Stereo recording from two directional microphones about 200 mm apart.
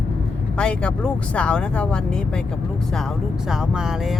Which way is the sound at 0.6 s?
5° left (ahead or behind).